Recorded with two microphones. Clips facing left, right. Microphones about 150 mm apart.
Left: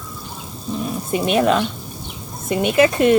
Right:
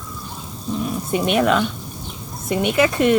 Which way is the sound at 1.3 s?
30° left (ahead or behind).